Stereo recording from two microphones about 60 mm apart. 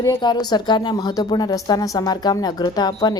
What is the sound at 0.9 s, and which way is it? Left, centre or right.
A woman's voice, left.